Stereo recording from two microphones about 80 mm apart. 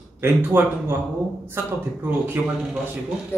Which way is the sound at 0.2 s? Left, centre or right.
Right.